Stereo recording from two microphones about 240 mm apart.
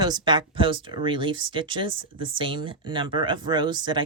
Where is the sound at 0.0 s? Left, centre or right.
Centre.